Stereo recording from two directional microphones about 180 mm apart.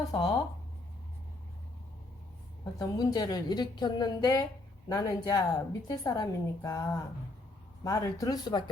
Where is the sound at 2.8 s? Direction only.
20° left (ahead or behind).